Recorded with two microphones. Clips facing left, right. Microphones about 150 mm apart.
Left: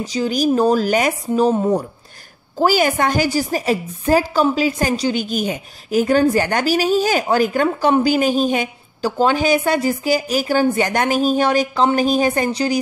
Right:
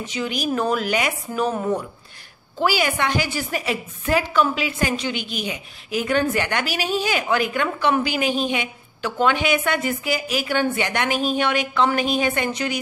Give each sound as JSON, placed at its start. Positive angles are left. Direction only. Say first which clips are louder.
{"t": 0.0, "sound": "a woman's voice", "louder": "left 7 dB", "side_deg": 35}
{"t": 2.6, "sound": "a woman's voice", "louder": "left 5 dB", "side_deg": 45}